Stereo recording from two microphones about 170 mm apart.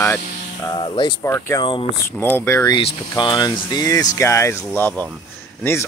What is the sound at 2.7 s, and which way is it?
Speech, 25° left (ahead or behind).